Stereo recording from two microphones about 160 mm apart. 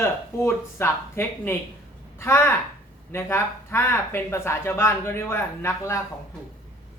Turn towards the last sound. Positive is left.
turn(degrees=15)  # may be behind; listen again after turning